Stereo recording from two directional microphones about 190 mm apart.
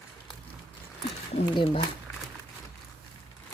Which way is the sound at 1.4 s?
25° left (ahead or behind).